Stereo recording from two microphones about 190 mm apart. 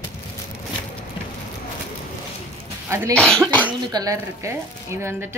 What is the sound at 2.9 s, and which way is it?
A woman's voice, 15° right (ahead or behind).